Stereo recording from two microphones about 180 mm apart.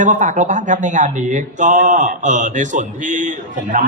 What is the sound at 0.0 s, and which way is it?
A man's voice, 45° right (ahead or behind).